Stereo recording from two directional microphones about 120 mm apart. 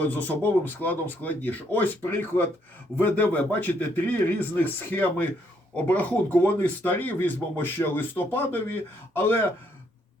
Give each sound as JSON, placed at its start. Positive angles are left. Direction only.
{"t": 0.0, "sound": "speech", "side_deg": 15}